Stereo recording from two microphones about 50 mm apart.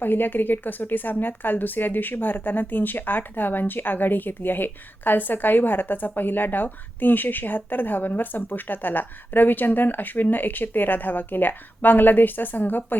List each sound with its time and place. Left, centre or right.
0.0 s speech: left